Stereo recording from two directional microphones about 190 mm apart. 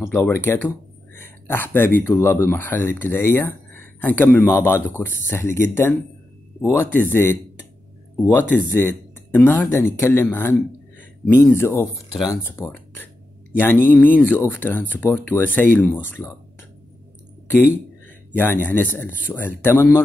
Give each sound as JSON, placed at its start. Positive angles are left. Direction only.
{"t": 0.0, "sound": "speech", "side_deg": 10}
{"t": 12.1, "sound": "speech", "side_deg": 0}
{"t": 12.4, "sound": "speech", "side_deg": 10}
{"t": 17.5, "sound": "a man's voice", "side_deg": 10}